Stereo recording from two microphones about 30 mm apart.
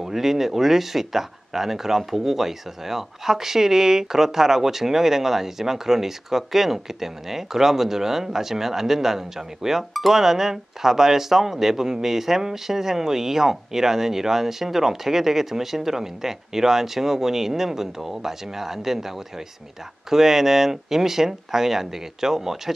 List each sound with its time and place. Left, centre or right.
0.0 s speech: centre